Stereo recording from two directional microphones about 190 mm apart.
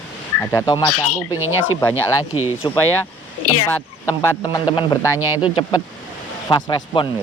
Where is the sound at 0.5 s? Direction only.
20° left (ahead or behind).